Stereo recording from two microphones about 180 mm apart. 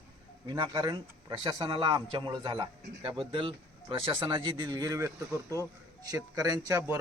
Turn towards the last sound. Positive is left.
turn(degrees=-15)  # may be behind; listen again after turning